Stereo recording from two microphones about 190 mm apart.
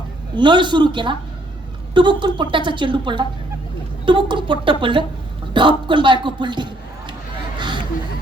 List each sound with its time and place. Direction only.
0.3 s a woman's voice: 25° right (ahead or behind)